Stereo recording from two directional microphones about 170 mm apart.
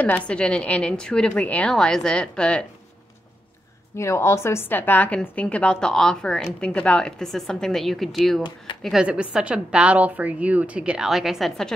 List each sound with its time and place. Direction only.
0.0 s a woman's voice: 5° left (ahead or behind)
3.9 s a woman's voice: 15° left (ahead or behind); by 8.4 s centre (ahead or behind)
8.4 s speech: 25° left (ahead or behind)
8.8 s a woman's voice: 5° right (ahead or behind)